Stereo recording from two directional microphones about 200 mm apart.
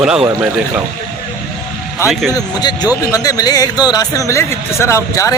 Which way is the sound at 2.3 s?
20° left (ahead or behind).